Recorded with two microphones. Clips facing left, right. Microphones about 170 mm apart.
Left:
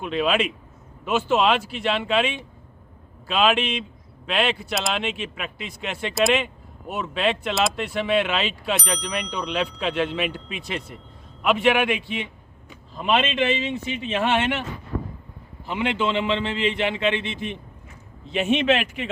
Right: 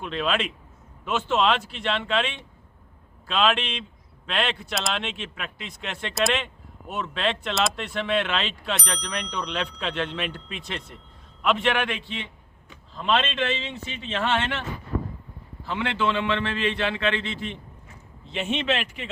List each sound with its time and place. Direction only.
0.0 s a man's voice: 5° left (ahead or behind)
15.6 s a man's voice: 20° left (ahead or behind)